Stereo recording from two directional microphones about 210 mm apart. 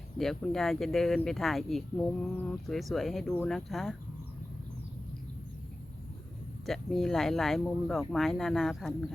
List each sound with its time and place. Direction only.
0.2 s speech: centre (ahead or behind)
6.7 s speech: centre (ahead or behind)